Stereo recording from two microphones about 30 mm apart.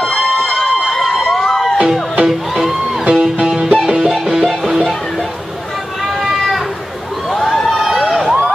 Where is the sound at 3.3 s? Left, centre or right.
Right.